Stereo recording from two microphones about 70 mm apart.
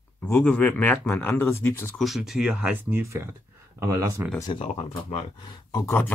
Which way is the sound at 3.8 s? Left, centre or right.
Right.